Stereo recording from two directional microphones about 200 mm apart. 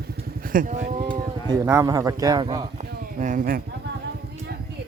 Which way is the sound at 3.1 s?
40° right (ahead or behind).